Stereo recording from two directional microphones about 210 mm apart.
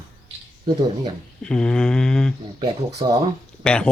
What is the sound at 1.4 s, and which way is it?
Speech, 5° left (ahead or behind).